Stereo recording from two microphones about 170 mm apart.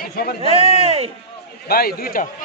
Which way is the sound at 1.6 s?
60° left (ahead or behind).